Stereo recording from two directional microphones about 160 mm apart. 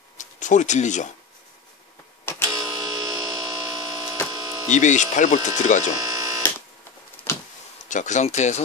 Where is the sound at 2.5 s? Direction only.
25° right (ahead or behind).